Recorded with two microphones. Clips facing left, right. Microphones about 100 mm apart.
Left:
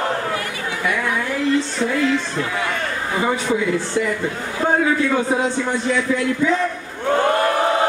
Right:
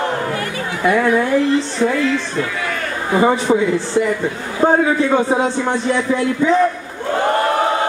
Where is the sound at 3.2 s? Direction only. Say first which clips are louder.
Right 6 dB; 25° right (ahead or behind).